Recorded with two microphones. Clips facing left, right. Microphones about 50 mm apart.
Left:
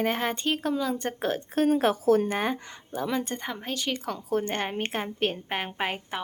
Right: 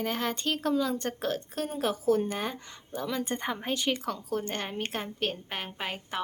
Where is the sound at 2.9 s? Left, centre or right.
Centre.